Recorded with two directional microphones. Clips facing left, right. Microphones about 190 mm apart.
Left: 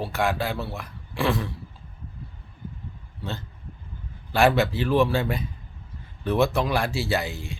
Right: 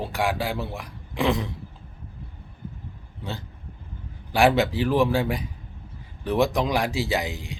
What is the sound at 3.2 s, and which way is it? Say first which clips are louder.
Speech: even; 15° right (ahead or behind).